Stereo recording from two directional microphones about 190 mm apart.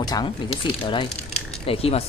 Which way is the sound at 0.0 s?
20° left (ahead or behind).